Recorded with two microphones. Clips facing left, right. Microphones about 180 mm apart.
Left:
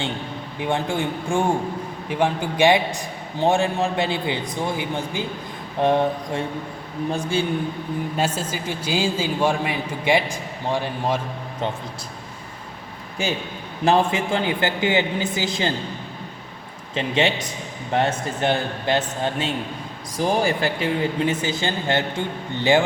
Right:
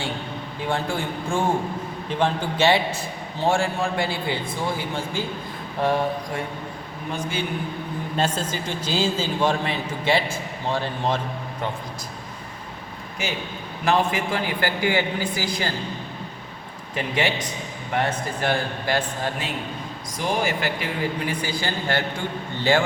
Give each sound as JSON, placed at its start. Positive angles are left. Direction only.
{"t": 0.6, "sound": "a man's voice", "side_deg": 20}
{"t": 8.1, "sound": "a man's voice", "side_deg": 10}
{"t": 13.8, "sound": "a man's voice", "side_deg": 25}
{"t": 16.9, "sound": "a man's voice", "side_deg": 25}
{"t": 20.1, "sound": "a man's voice", "side_deg": 35}